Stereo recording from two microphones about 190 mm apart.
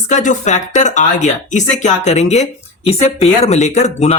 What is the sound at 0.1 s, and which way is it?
Speech, 40° left (ahead or behind).